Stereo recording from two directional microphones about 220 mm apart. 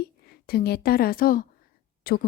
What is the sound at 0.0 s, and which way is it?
A woman's voice, 45° left (ahead or behind).